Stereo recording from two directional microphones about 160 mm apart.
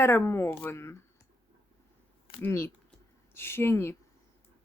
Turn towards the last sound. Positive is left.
turn(degrees=15)  # may be behind; listen again after turning